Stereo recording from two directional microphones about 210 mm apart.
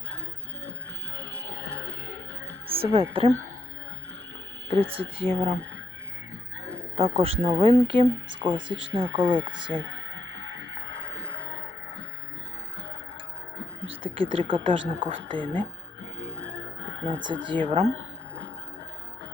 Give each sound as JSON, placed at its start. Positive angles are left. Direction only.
{"t": 1.1, "sound": "music", "side_deg": -55}
{"t": 2.8, "sound": "speech", "side_deg": -25}
{"t": 4.7, "sound": "speech", "side_deg": -25}
{"t": 6.9, "sound": "speech", "side_deg": -25}
{"t": 9.7, "sound": "radio", "side_deg": -60}
{"t": 14.0, "sound": "speech", "side_deg": -25}
{"t": 16.4, "sound": "music", "side_deg": -60}
{"t": 17.2, "sound": "speech", "side_deg": -20}